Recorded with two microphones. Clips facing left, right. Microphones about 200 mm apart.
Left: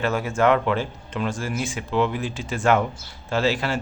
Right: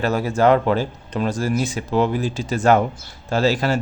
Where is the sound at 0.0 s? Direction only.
35° right (ahead or behind).